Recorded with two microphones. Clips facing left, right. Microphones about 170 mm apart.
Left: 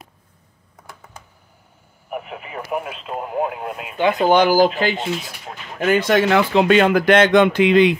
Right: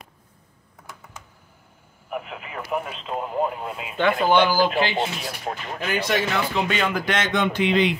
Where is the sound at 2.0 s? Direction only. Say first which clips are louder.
Left 2 dB; 20° left (ahead or behind).